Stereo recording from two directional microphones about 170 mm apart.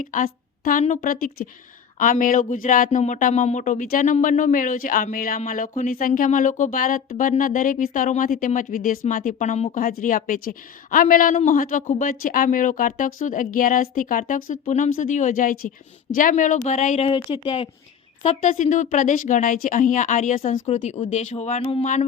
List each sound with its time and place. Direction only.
0.0 s speech: 50° left (ahead or behind)
9.8 s a woman's voice: 55° left (ahead or behind); by 17.7 s 35° left (ahead or behind)
18.2 s speech: 45° left (ahead or behind)